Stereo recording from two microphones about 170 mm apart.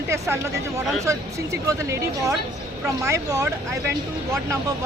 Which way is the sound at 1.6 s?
20° right (ahead or behind).